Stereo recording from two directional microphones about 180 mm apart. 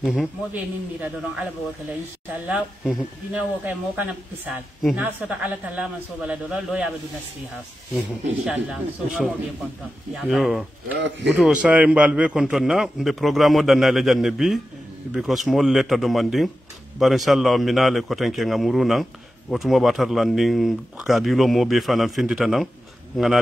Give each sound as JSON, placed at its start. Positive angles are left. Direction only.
{"t": 0.0, "sound": "a man's voice", "side_deg": 0}
{"t": 2.4, "sound": "a man's voice", "side_deg": -5}
{"t": 8.5, "sound": "a man's voice", "side_deg": -5}
{"t": 10.9, "sound": "speech", "side_deg": -75}
{"t": 11.3, "sound": "a man's voice", "side_deg": -5}